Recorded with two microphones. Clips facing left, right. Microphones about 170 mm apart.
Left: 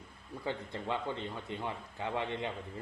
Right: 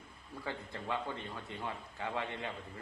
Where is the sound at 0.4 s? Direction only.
20° left (ahead or behind).